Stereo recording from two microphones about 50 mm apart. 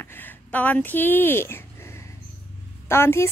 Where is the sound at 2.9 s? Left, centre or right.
Left.